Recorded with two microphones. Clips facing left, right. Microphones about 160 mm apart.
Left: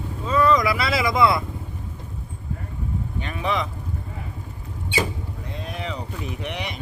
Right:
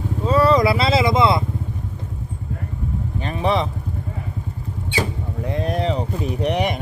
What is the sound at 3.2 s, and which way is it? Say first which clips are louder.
Vehicle: right 6 dB; 35° right (ahead or behind).